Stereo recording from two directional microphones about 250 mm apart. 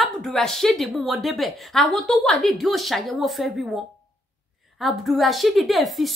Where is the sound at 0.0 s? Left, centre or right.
Centre.